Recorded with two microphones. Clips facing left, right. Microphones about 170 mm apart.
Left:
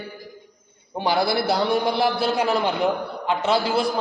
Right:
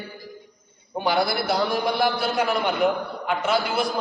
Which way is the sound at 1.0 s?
30° left (ahead or behind).